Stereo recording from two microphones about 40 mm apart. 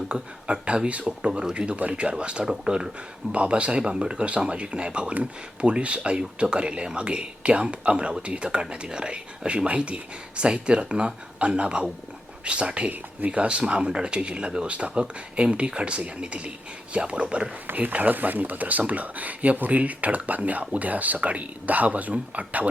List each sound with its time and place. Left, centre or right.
0.1 s speech: right
2.4 s speech: centre
3.3 s speech: right
17.7 s speech: right